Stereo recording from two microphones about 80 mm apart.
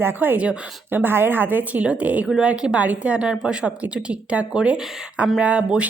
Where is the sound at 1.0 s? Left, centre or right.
Right.